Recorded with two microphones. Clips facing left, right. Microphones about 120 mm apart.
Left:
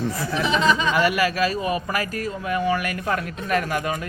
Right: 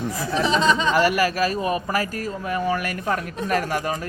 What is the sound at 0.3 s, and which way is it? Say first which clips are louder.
Speech: right 1 dB; 30° right (ahead or behind).